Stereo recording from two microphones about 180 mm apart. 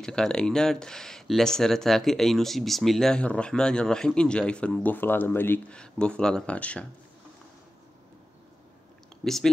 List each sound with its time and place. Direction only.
0.0 s speech: 5° left (ahead or behind)
9.2 s speech: centre (ahead or behind)